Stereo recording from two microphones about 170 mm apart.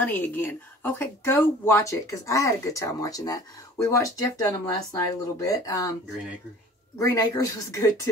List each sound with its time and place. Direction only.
0.0 s speech: 10° left (ahead or behind)
7.0 s speech: 20° left (ahead or behind)